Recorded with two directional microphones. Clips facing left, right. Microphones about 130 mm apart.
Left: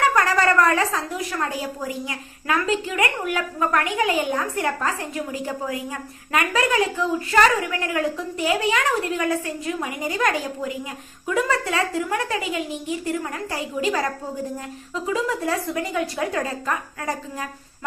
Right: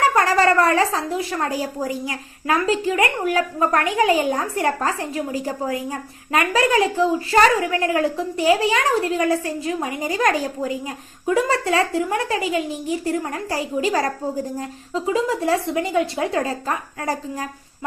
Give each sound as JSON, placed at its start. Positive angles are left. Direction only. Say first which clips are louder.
{"t": 0.0, "sound": "speech", "louder": "right 2 dB", "side_deg": -30}